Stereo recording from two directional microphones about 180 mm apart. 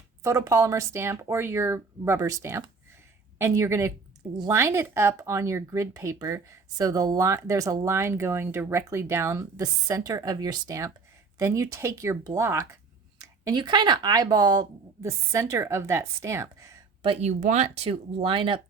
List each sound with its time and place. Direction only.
0.2 s speech: 15° right (ahead or behind)
17.0 s speech: 35° right (ahead or behind)